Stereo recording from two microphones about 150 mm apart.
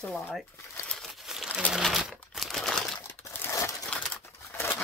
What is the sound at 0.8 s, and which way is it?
Crumpling, centre (ahead or behind).